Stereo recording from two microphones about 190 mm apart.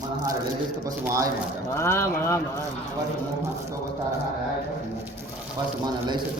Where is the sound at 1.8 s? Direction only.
15° left (ahead or behind).